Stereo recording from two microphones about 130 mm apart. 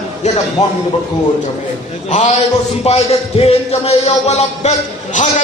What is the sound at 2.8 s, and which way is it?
A man's voice, 55° left (ahead or behind).